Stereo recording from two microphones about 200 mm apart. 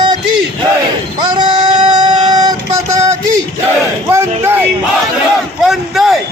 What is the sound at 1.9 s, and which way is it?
Music, 20° right (ahead or behind).